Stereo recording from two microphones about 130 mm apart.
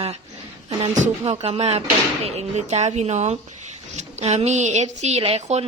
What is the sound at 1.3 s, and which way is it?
A woman's voice, 55° right (ahead or behind).